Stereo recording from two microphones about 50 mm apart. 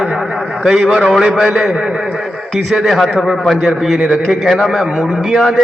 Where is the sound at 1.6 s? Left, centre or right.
Centre.